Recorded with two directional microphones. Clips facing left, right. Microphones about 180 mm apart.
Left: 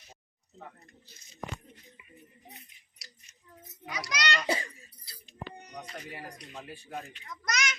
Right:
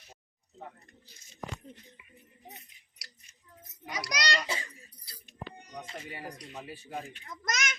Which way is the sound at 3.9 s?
40° right (ahead or behind).